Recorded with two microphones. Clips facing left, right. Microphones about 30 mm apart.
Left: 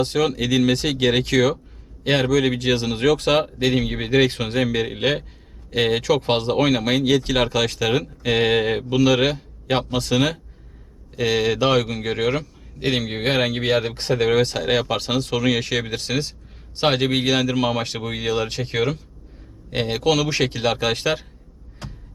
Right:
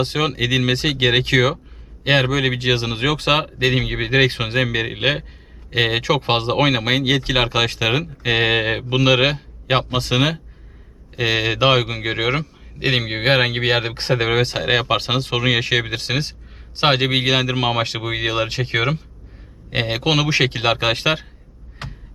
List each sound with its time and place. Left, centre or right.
0.0 s a man's voice: right
21.8 s heart sounds: right